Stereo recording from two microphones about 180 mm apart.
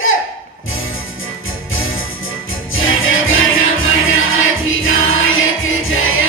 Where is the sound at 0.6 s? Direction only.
90° left.